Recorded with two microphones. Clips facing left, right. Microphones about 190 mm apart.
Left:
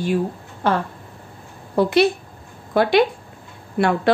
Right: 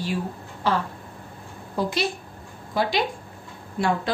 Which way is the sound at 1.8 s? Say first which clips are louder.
Left 9 dB; 60° left (ahead or behind).